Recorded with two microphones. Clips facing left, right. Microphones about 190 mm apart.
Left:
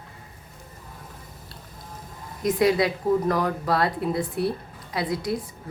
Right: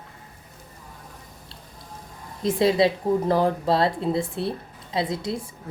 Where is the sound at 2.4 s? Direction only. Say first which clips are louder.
Right 1 dB; 25° right (ahead or behind).